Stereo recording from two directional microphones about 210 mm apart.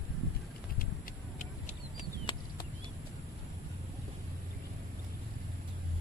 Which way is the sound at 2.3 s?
25° left (ahead or behind).